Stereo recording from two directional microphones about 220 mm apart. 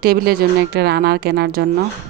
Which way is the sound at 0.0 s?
45° right (ahead or behind).